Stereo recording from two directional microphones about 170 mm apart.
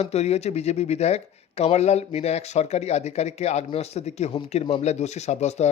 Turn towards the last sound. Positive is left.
turn(degrees=40)  # may be behind; listen again after turning